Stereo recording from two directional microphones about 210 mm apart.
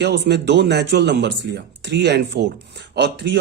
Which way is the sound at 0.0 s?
55° right (ahead or behind).